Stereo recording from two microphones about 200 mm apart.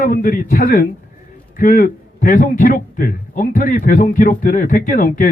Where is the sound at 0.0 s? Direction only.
45° left (ahead or behind).